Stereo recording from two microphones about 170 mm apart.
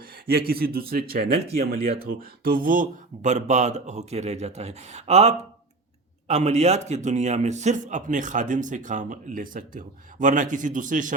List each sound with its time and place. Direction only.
0.3 s a man's voice: 65° right (ahead or behind)